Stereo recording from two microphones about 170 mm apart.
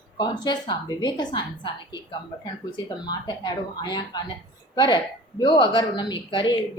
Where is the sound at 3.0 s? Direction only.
25° left (ahead or behind).